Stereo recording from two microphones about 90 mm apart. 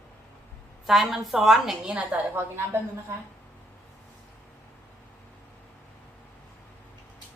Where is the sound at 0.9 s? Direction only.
5° right (ahead or behind); by 2.8 s 20° right (ahead or behind).